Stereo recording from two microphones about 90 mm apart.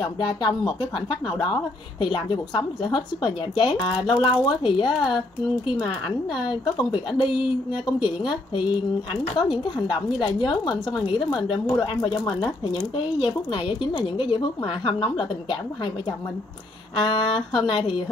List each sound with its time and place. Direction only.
0.0 s a woman's voice: 60° left (ahead or behind)
6.5 s a woman's voice: 60° left (ahead or behind)
13.5 s a woman's voice: 75° left (ahead or behind)